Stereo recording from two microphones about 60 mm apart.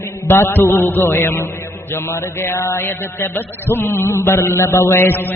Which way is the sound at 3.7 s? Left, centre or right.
Left.